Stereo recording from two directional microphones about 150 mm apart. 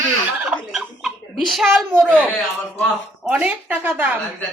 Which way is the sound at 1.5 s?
Centre (ahead or behind).